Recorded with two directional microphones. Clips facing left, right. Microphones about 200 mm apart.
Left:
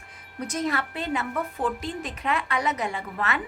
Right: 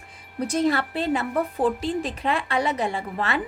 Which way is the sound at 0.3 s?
30° right (ahead or behind).